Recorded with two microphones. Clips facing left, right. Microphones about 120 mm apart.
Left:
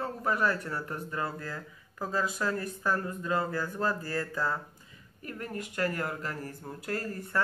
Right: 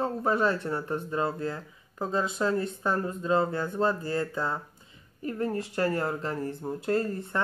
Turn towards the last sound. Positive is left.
turn(degrees=-25)  # may be behind; listen again after turning